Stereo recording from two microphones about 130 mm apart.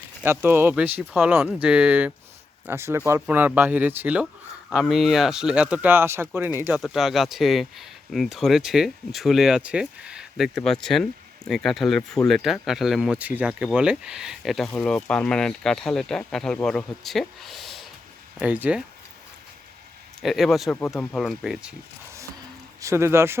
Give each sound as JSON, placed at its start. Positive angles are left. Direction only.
{"t": 0.2, "sound": "speech", "side_deg": -15}
{"t": 6.7, "sound": "speech", "side_deg": -5}
{"t": 18.3, "sound": "speech", "side_deg": -10}
{"t": 20.2, "sound": "speech", "side_deg": 0}
{"t": 22.8, "sound": "speech", "side_deg": -20}